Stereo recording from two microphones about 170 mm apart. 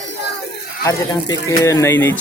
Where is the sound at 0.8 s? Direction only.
20° left (ahead or behind).